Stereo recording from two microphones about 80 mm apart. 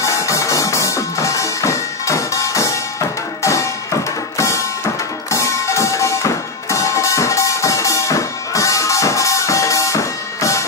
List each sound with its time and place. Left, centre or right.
0.0 s music: left
5.3 s music: left